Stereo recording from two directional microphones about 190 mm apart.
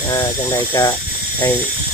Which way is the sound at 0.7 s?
20° left (ahead or behind).